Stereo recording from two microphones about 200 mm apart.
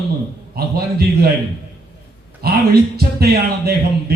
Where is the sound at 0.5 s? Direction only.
50° right (ahead or behind).